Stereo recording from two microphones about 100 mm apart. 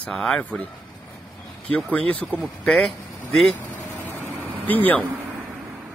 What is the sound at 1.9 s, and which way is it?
Speech, 15° left (ahead or behind).